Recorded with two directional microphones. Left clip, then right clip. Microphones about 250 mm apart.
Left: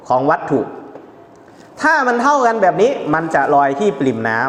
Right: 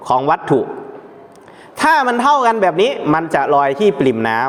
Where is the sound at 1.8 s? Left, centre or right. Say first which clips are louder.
Right 1 dB; right.